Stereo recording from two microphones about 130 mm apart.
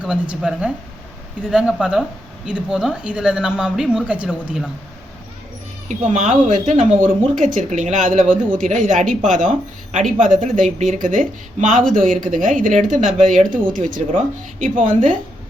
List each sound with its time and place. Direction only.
0.0 s speech: 5° right (ahead or behind)
5.9 s a woman's voice: 70° right (ahead or behind); by 8.5 s 85° right
8.6 s a woman's voice: 75° right (ahead or behind)